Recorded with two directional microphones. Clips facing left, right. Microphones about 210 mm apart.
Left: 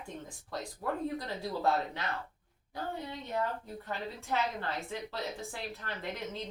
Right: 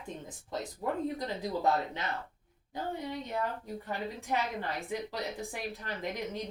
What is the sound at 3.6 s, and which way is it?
A woman's voice, 15° right (ahead or behind).